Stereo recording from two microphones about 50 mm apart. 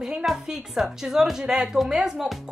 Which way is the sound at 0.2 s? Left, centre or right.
Centre.